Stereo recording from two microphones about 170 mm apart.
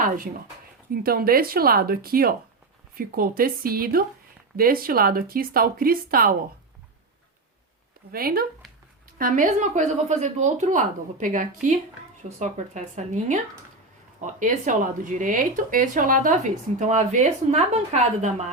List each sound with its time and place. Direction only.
1.0 s speech: 60° right (ahead or behind)
8.1 s speech: 60° right (ahead or behind); by 18.5 s 40° right (ahead or behind)